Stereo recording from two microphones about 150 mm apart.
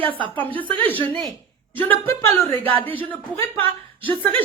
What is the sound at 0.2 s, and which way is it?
Speech, 35° right (ahead or behind).